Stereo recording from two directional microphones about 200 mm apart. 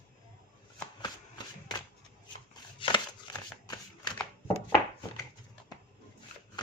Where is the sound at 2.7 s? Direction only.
20° left (ahead or behind).